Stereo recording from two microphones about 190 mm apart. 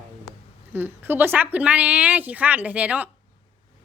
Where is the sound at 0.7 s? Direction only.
10° right (ahead or behind).